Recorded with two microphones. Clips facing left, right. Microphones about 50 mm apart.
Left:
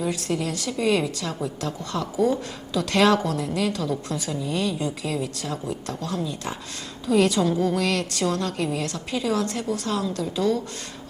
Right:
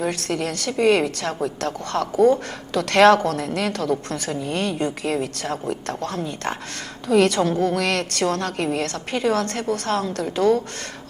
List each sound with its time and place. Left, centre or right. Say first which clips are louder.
0.0 s a woman's voice: right 2 dB; right